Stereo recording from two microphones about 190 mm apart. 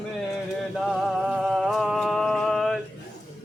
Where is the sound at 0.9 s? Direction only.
Centre (ahead or behind).